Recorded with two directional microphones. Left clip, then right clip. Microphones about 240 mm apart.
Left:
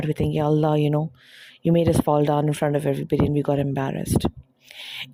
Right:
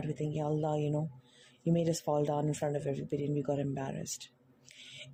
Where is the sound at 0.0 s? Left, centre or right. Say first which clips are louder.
Left 13 dB; left.